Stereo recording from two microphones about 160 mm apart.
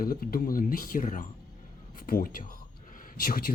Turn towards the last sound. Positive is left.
turn(degrees=60)  # may be behind; listen again after turning